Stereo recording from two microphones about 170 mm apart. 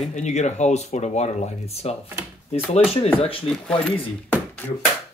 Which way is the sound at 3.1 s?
35° left (ahead or behind).